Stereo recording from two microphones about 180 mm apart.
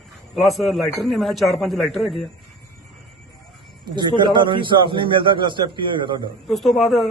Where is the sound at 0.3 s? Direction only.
Centre (ahead or behind).